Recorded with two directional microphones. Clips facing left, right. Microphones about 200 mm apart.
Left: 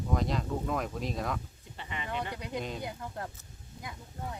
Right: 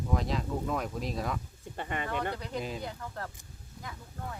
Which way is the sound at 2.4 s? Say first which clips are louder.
Even; 15° left (ahead or behind).